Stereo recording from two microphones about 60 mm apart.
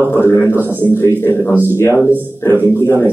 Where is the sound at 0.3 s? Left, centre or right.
Left.